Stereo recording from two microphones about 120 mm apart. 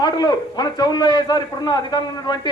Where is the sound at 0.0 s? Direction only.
35° left (ahead or behind).